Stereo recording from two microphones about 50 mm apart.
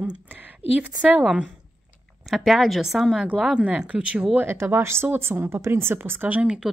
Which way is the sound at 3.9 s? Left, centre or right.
Right.